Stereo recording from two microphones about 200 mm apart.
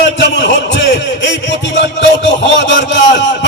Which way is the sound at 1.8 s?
65° left (ahead or behind).